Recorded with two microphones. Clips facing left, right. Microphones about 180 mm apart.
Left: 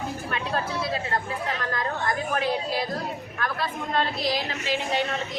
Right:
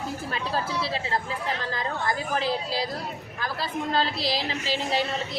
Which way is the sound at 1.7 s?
30° right (ahead or behind).